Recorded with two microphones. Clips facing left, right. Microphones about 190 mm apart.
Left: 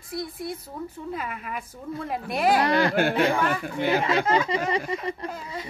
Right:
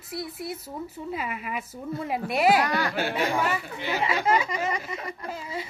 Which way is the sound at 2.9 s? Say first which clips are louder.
Left 4 dB; 55° left (ahead or behind).